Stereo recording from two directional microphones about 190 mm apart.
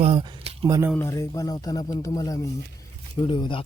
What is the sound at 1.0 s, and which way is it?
Speech, 15° left (ahead or behind).